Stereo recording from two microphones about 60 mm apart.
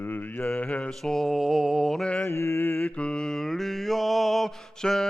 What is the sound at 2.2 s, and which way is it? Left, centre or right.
Mantra, left.